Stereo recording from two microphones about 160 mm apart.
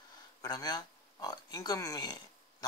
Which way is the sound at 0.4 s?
25° left (ahead or behind).